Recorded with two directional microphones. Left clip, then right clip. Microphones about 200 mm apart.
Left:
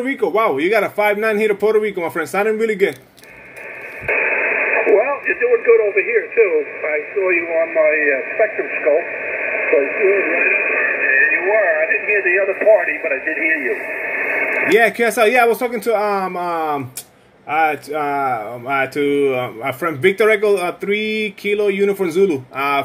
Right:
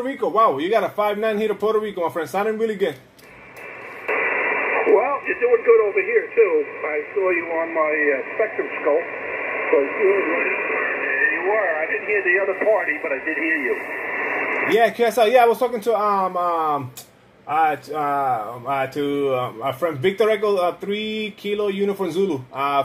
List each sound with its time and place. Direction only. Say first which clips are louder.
0.0 s speech: left 1 dB; 50° left (ahead or behind)
4.0 s speech: left 4 dB; 15° left (ahead or behind)
13.7 s radio: left 3 dB; 10° left (ahead or behind)
14.8 s speech: left 1 dB; 45° left (ahead or behind)